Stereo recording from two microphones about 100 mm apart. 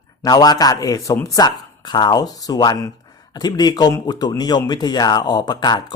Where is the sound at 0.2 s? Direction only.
40° left (ahead or behind).